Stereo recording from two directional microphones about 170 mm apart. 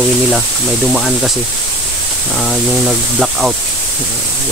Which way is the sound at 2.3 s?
Centre (ahead or behind).